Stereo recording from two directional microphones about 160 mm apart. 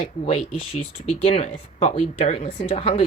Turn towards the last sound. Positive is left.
turn(degrees=35)  # may be behind; listen again after turning